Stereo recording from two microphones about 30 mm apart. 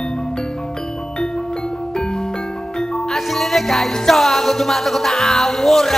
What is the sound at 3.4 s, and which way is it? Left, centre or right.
Music, centre.